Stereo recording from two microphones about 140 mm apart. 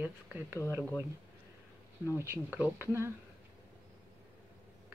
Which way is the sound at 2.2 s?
15° right (ahead or behind).